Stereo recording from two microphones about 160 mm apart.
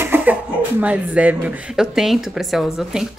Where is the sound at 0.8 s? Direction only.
10° right (ahead or behind).